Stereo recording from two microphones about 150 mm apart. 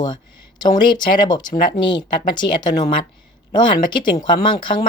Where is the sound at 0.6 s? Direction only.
30° left (ahead or behind).